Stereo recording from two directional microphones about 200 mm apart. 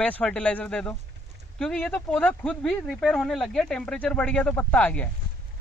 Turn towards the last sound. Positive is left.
turn(degrees=10)  # may be behind; listen again after turning